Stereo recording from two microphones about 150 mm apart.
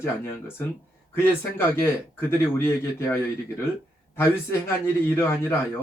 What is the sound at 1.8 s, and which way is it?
Speech, 15° left (ahead or behind).